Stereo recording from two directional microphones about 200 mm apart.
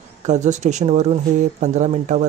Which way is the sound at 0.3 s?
35° right (ahead or behind).